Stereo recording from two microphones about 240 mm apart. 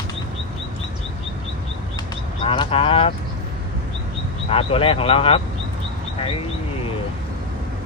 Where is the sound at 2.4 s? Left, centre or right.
Left.